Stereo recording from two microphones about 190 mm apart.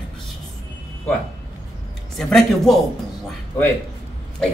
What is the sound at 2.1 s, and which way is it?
Speech, centre (ahead or behind).